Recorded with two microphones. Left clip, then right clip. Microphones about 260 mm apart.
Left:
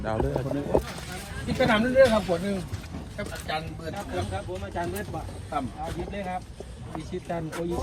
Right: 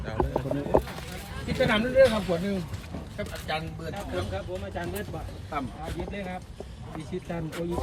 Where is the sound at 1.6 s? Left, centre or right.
Centre.